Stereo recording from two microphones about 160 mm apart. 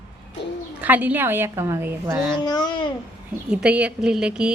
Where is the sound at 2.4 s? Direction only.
25° left (ahead or behind).